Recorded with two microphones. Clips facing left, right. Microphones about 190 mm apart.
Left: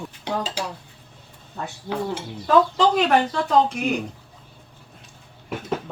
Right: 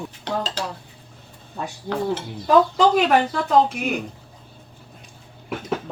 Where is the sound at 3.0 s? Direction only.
5° right (ahead or behind).